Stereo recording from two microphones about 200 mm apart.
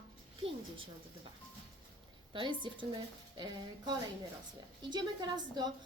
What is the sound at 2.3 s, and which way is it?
A woman's voice, 25° right (ahead or behind).